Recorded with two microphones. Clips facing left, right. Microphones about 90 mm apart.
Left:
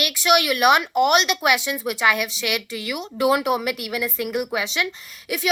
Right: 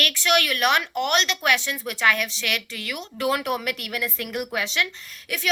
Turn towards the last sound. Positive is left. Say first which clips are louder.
# left 4 dB
turn(degrees=10)  # may be behind; listen again after turning